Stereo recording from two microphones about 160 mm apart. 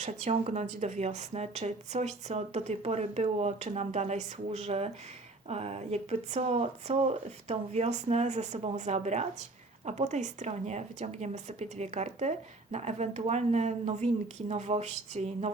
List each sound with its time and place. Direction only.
0.0 s speech: 45° right (ahead or behind)